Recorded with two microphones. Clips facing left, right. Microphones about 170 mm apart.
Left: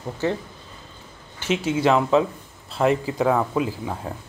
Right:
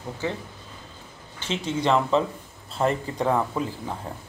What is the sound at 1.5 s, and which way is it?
Speech, 5° left (ahead or behind).